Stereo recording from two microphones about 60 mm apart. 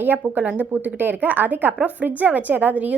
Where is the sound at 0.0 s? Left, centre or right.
Right.